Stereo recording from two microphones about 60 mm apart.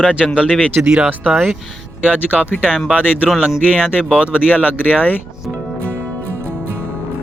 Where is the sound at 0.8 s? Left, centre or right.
Centre.